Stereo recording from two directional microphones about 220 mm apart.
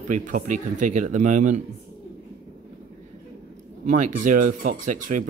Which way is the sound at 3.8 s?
35° right (ahead or behind).